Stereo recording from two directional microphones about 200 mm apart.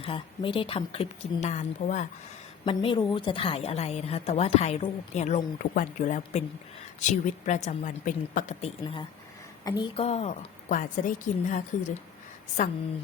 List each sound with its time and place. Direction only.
0.0 s speech: 25° left (ahead or behind)
2.6 s a woman's voice: 25° left (ahead or behind)